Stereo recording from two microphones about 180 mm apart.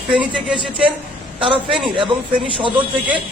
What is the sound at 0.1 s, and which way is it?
Speech, 5° right (ahead or behind).